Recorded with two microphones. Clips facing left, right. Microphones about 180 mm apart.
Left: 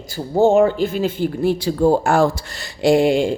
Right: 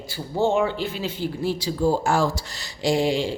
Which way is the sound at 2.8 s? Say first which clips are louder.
Left 7 dB; 60° left (ahead or behind).